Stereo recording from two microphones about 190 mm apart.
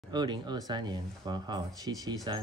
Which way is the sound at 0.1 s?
20° right (ahead or behind).